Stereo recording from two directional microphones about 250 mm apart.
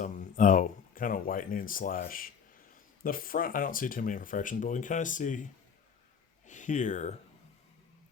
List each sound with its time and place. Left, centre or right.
0.0 s speech: left
6.5 s speech: left